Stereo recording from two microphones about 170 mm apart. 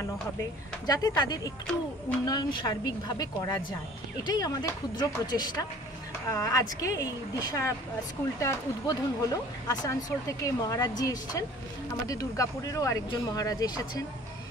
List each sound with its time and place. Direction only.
0.0 s speech: 20° left (ahead or behind)